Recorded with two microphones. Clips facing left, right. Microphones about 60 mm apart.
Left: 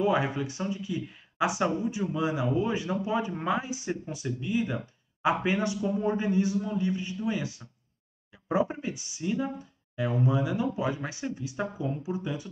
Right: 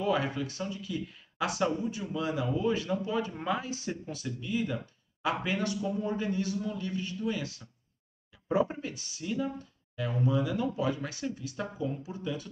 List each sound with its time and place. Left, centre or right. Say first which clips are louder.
0.0 s speech: left 3 dB; centre